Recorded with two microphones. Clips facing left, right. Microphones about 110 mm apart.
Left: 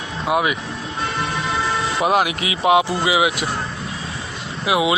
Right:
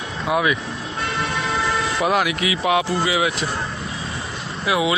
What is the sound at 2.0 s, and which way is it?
Speech, 25° left (ahead or behind).